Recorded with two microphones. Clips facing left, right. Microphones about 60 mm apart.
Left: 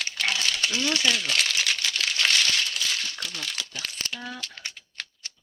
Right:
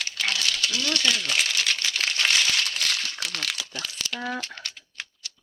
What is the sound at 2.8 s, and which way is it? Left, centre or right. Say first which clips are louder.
Crumpling: right 2 dB; right.